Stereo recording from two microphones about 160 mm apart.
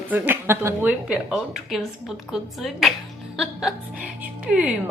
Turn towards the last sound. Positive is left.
turn(degrees=-5)  # may be behind; listen again after turning